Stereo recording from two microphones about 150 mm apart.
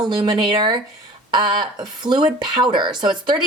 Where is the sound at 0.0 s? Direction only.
30° right (ahead or behind).